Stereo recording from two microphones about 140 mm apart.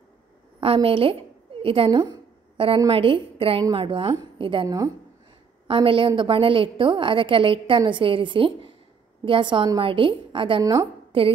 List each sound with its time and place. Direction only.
0.7 s a woman's voice: 40° right (ahead or behind)
10.6 s a woman's voice: 25° right (ahead or behind)
11.1 s a woman's voice: 40° right (ahead or behind)